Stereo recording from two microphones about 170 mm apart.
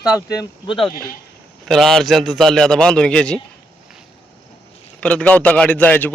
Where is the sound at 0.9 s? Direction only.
60° left (ahead or behind).